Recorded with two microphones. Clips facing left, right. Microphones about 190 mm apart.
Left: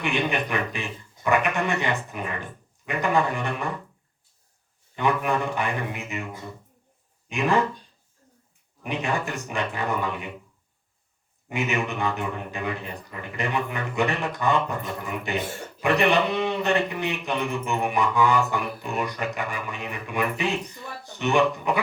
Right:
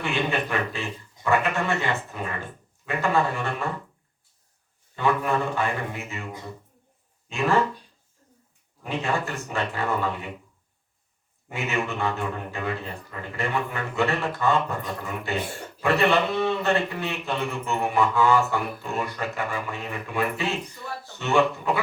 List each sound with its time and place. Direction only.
0.0 s a man's voice: 15° left (ahead or behind)
4.9 s a man's voice: 15° left (ahead or behind)
7.3 s a man's voice: 15° left (ahead or behind)
8.8 s a man's voice: 15° left (ahead or behind)
11.4 s a man's voice: 15° left (ahead or behind)